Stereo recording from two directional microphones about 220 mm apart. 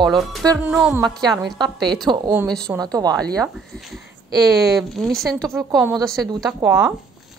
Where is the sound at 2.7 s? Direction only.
15° right (ahead or behind).